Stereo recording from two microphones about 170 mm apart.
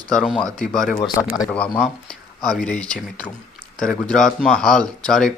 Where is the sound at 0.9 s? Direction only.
25° left (ahead or behind).